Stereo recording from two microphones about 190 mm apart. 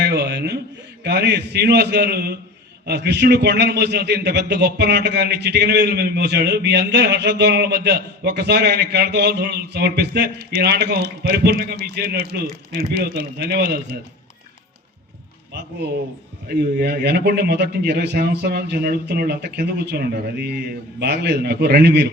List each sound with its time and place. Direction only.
0.0 s a sound: 60° right (ahead or behind)
1.0 s a man's voice: 60° right (ahead or behind)
16.5 s a man's voice: 55° right (ahead or behind)